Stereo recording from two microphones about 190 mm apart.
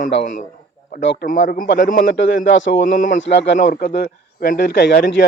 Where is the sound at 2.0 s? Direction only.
75° left (ahead or behind).